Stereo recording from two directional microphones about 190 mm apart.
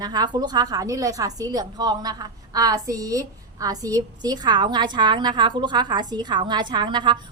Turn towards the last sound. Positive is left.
turn(degrees=-25)  # may be behind; listen again after turning